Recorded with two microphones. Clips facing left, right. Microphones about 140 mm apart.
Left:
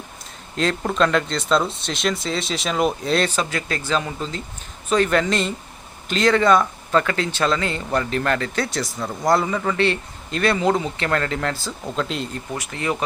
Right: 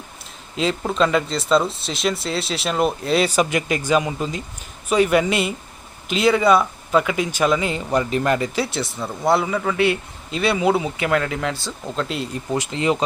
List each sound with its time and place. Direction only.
0.5 s speech: 5° right (ahead or behind)
12.5 s speech: 20° right (ahead or behind)